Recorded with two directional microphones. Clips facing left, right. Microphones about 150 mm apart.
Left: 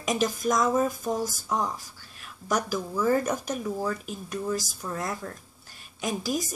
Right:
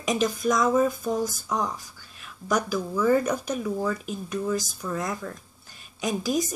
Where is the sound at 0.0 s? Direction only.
Centre (ahead or behind).